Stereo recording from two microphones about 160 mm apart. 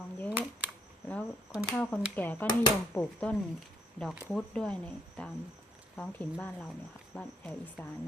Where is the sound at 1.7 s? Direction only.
10° left (ahead or behind).